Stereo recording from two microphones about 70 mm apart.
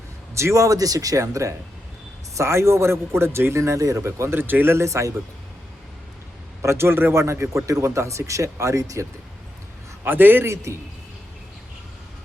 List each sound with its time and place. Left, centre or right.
0.3 s a man's voice: right
6.6 s a man's voice: right
10.0 s a man's voice: right